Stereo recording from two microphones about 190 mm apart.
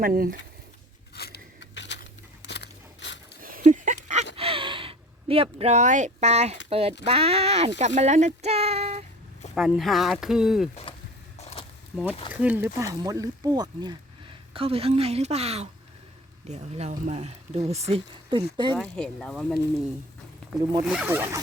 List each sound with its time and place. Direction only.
0.0 s speech: 50° right (ahead or behind)
1.1 s keys jangling: 60° left (ahead or behind)
2.5 s biting: 70° left (ahead or behind)
3.4 s a sound: 45° right (ahead or behind)
4.4 s gasp: 30° right (ahead or behind)
6.7 s speech: 30° right (ahead or behind)
9.6 s speech: centre (ahead or behind)
11.9 s speech: 10° right (ahead or behind)
14.5 s speech: 30° right (ahead or behind)
18.7 s speech: 5° left (ahead or behind)
20.8 s speech: 5° right (ahead or behind)